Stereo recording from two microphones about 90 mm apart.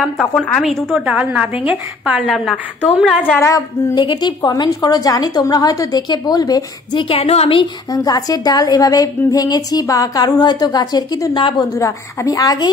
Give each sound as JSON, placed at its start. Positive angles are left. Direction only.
{"t": 0.0, "sound": "a woman's voice", "side_deg": 0}
{"t": 1.0, "sound": "a woman's voice", "side_deg": -15}
{"t": 3.3, "sound": "a woman's voice", "side_deg": 35}
{"t": 3.9, "sound": "a woman's voice", "side_deg": 55}
{"t": 7.0, "sound": "a woman's voice", "side_deg": 90}
{"t": 7.9, "sound": "a woman's voice", "side_deg": 45}
{"t": 11.3, "sound": "a woman's voice", "side_deg": 65}
{"t": 11.8, "sound": "a woman's voice", "side_deg": 40}